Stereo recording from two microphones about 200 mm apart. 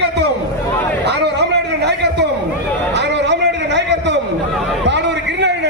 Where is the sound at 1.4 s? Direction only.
55° right (ahead or behind).